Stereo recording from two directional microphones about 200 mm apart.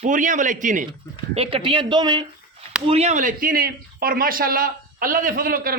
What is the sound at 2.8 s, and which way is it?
Speech, 30° right (ahead or behind).